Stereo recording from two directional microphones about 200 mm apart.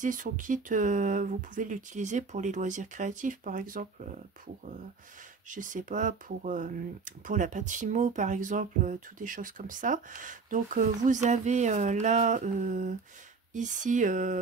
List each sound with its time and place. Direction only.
0.0 s speech: 40° right (ahead or behind)
5.5 s speech: 40° right (ahead or behind)